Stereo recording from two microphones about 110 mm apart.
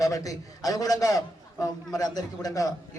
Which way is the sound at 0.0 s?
35° left (ahead or behind).